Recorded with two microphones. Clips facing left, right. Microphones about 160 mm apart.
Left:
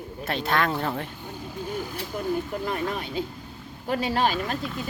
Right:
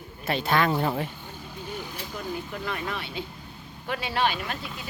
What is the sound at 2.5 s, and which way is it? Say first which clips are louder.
Speech: left 4 dB; 40° left (ahead or behind).